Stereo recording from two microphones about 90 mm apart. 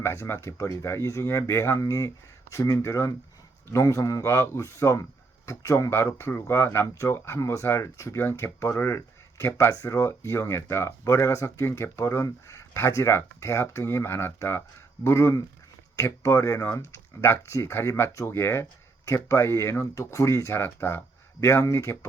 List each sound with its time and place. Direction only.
0.0 s speech: 30° left (ahead or behind)